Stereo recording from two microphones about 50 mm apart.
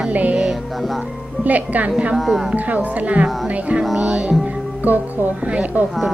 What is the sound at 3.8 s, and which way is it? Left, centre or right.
Music, centre.